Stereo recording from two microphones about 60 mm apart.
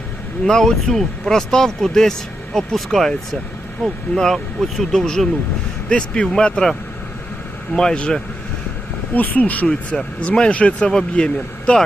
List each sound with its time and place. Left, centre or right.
0.4 s speech: centre
7.8 s speech: centre
9.1 s speech: left